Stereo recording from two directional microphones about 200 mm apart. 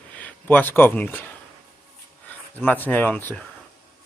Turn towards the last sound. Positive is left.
turn(degrees=10)  # may be behind; listen again after turning